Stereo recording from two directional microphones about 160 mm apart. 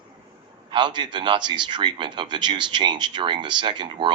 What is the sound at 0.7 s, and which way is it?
Speech, 30° right (ahead or behind).